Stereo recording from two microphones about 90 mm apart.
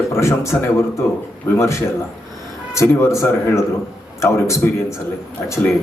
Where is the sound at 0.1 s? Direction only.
30° left (ahead or behind).